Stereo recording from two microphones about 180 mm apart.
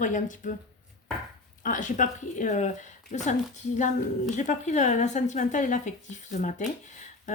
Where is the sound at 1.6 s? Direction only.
45° left (ahead or behind).